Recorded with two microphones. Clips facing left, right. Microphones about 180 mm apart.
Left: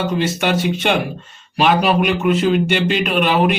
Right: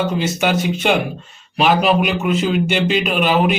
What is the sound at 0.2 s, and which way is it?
A man's voice, centre (ahead or behind).